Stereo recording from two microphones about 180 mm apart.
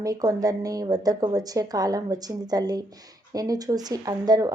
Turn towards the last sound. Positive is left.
turn(degrees=-20)  # may be behind; listen again after turning